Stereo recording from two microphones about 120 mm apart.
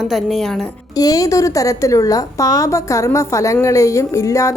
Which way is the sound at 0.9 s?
30° left (ahead or behind).